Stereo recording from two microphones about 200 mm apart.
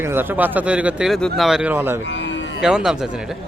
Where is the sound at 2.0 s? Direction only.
65° left (ahead or behind).